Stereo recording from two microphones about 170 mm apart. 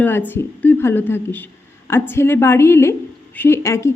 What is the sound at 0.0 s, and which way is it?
A woman's voice, 10° left (ahead or behind).